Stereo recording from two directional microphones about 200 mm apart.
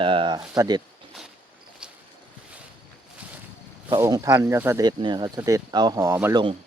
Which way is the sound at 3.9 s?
15° right (ahead or behind).